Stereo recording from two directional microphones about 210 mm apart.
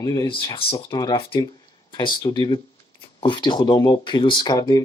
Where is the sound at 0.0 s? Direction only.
20° left (ahead or behind).